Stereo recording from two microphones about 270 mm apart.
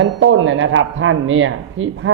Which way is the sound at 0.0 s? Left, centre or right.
Right.